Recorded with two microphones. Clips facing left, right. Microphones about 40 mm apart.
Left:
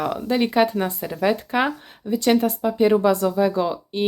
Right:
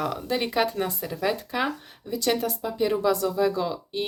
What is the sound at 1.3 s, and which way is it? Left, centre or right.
Speech, left.